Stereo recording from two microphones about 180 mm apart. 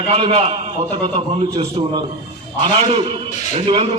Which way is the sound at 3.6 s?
30° right (ahead or behind).